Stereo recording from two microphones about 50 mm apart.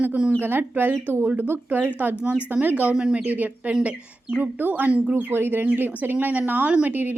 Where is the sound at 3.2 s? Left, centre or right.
Right.